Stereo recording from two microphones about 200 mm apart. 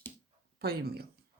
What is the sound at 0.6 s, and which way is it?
Speech, 50° right (ahead or behind).